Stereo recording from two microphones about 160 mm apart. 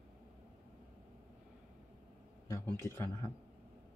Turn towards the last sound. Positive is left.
turn(degrees=15)  # may be behind; listen again after turning